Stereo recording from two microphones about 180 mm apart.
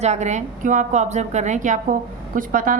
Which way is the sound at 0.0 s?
40° right (ahead or behind).